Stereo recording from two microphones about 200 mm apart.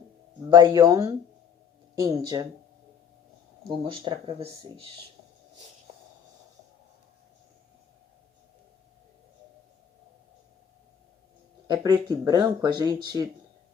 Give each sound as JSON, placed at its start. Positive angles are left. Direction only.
{"t": 0.5, "sound": "speech", "side_deg": -20}
{"t": 3.7, "sound": "speech", "side_deg": -25}
{"t": 11.7, "sound": "speech", "side_deg": -20}